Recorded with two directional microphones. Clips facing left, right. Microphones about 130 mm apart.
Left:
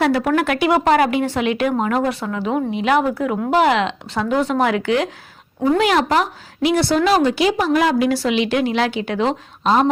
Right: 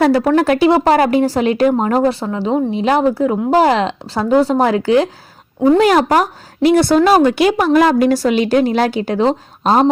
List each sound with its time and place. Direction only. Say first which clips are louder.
0.0 s a woman's voice: right 5 dB; 35° right (ahead or behind); by 7.7 s 55° right (ahead or behind)
7.7 s speech: right 5 dB; 45° right (ahead or behind)